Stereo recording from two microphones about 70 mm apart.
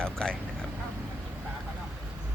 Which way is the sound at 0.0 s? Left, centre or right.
Centre.